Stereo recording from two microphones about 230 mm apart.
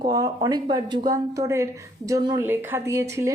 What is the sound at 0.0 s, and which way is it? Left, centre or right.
A woman's voice, centre.